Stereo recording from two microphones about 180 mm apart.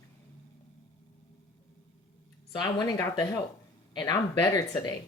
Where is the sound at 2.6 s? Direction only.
20° left (ahead or behind).